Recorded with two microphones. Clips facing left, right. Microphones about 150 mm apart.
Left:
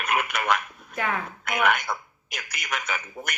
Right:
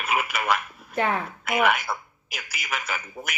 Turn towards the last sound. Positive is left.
turn(degrees=-5)  # may be behind; listen again after turning